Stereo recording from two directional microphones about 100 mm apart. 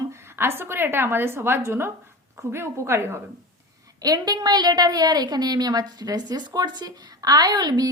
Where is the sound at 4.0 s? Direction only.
40° right (ahead or behind).